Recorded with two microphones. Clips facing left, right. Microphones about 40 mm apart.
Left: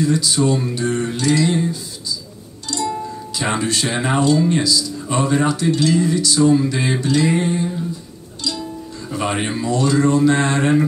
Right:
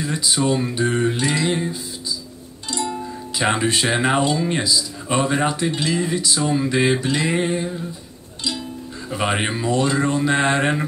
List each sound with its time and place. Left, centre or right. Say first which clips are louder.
0.0 s speech: left 4 dB; right
2.7 s music: left 3 dB; right
4.5 s speech: left 3 dB; right
9.1 s speech: even; right